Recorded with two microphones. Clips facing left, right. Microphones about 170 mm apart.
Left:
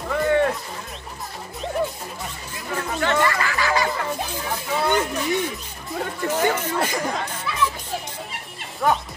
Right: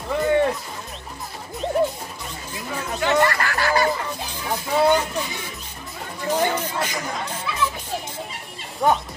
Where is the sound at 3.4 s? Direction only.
60° right (ahead or behind).